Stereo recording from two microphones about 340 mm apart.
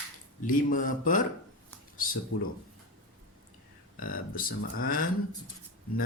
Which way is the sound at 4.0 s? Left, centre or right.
Left.